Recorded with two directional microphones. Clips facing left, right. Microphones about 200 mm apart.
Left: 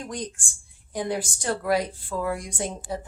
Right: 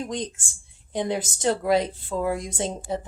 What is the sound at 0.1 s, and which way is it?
A woman's voice, 20° right (ahead or behind).